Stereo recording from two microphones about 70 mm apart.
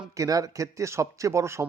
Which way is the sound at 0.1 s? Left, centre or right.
Right.